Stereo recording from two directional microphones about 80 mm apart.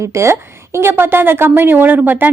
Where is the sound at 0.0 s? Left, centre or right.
Right.